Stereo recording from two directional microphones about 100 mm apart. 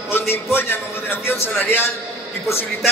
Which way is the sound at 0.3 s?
25° left (ahead or behind).